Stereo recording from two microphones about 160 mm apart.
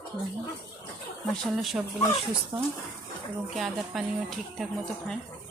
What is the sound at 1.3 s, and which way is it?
Speech, centre (ahead or behind).